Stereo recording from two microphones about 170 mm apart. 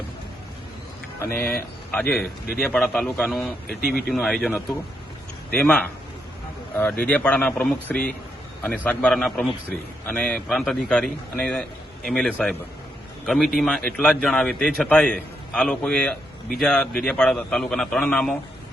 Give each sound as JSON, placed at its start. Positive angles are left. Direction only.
{"t": 1.9, "sound": "a man's voice", "side_deg": 5}
{"t": 3.7, "sound": "speech", "side_deg": 65}
{"t": 4.1, "sound": "a man's voice", "side_deg": 5}